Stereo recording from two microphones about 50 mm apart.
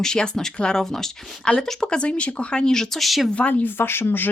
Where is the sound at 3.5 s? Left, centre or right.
Left.